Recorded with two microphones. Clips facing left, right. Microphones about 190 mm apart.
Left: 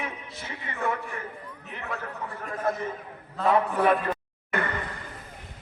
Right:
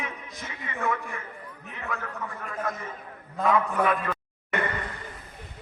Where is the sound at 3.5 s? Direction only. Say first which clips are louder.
Left 2 dB; 35° left (ahead or behind).